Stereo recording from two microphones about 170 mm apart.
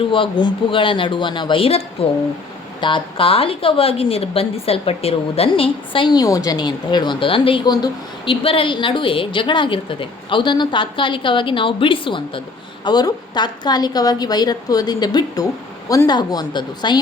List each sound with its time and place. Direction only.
0.1 s a woman's voice: 30° left (ahead or behind)